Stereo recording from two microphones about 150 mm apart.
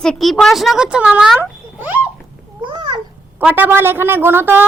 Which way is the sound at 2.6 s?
30° right (ahead or behind).